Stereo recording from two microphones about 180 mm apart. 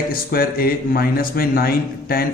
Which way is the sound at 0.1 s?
55° left (ahead or behind).